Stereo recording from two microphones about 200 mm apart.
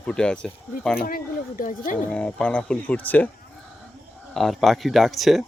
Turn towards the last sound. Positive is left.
turn(degrees=0)  # may be behind; listen again after turning